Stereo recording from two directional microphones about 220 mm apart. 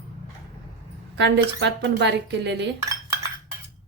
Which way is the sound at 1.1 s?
55° right (ahead or behind).